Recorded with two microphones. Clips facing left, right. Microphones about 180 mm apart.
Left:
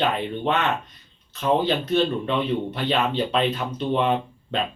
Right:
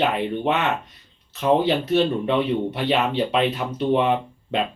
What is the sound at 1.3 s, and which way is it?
Speech, 15° right (ahead or behind).